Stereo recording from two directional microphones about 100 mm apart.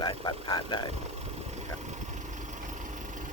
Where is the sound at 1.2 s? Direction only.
90° right.